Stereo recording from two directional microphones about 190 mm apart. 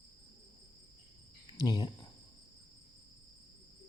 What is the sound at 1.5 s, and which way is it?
Speech, 20° left (ahead or behind).